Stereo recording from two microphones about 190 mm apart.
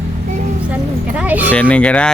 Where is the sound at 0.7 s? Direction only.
5° right (ahead or behind).